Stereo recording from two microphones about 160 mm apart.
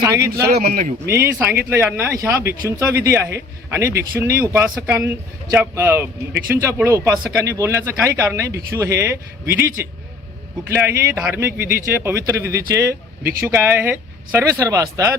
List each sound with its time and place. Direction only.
0.4 s a man's voice: 70° right (ahead or behind)
1.0 s speech: 15° right (ahead or behind)